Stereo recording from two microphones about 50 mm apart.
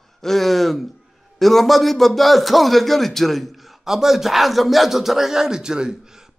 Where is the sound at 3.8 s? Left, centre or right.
Centre.